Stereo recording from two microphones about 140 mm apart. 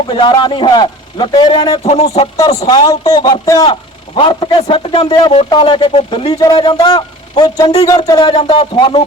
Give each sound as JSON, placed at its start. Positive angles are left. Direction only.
{"t": 0.1, "sound": "speech", "side_deg": 35}
{"t": 1.8, "sound": "a sound", "side_deg": 50}
{"t": 2.6, "sound": "a man's voice", "side_deg": 30}
{"t": 3.7, "sound": "speech", "side_deg": 40}